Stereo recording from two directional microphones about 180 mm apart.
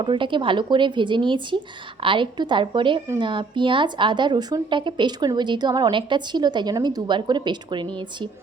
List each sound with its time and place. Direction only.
0.0 s speech: 25° right (ahead or behind)